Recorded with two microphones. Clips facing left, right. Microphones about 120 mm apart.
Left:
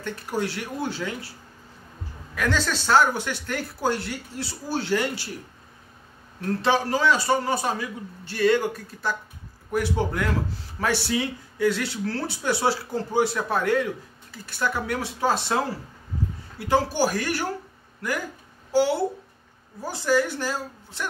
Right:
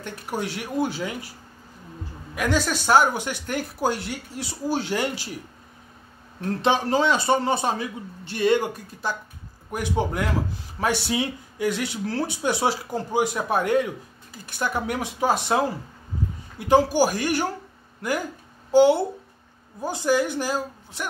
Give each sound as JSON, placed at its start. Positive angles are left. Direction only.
{"t": 0.0, "sound": "speech", "side_deg": -15}
{"t": 2.3, "sound": "speech", "side_deg": -15}
{"t": 6.6, "sound": "a man's voice", "side_deg": -20}
{"t": 18.7, "sound": "speech", "side_deg": -20}